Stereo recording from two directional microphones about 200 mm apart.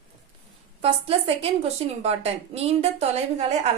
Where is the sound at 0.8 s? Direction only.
30° right (ahead or behind).